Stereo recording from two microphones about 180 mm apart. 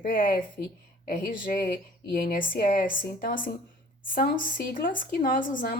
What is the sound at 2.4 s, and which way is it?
Speech, 50° left (ahead or behind).